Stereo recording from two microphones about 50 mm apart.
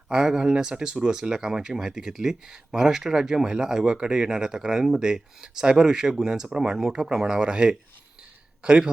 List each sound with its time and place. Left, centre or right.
0.1 s speech: centre